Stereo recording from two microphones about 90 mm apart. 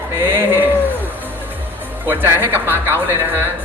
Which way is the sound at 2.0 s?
25° right (ahead or behind).